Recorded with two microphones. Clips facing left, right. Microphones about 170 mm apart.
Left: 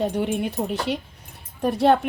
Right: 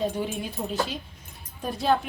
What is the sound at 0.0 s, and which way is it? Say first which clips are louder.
A woman's voice: left 5 dB; 65° left (ahead or behind).